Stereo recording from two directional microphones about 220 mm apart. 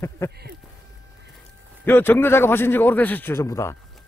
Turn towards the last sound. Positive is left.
turn(degrees=15)  # may be behind; listen again after turning